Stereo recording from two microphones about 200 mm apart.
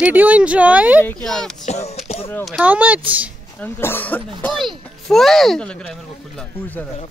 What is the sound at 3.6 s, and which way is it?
Speech, 10° left (ahead or behind).